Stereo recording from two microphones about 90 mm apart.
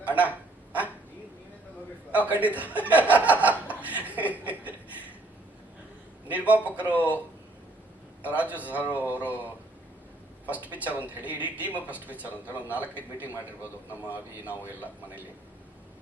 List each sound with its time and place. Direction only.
0.0 s a sound: 15° right (ahead or behind)
2.1 s a man's voice: 15° right (ahead or behind)
3.7 s chuckle: 20° right (ahead or behind)
6.5 s a man's voice: 15° right (ahead or behind)
8.2 s a man's voice: 15° right (ahead or behind)